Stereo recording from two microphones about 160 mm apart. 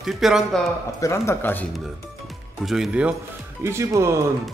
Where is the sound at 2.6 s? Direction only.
Centre (ahead or behind); by 4.2 s 20° right (ahead or behind).